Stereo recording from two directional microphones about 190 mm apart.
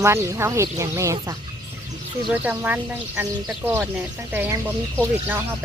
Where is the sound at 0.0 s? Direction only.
15° right (ahead or behind).